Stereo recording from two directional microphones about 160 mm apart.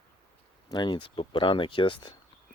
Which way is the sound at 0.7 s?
30° left (ahead or behind).